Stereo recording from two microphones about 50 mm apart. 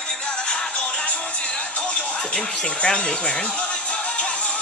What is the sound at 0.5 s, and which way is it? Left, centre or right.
Music, left.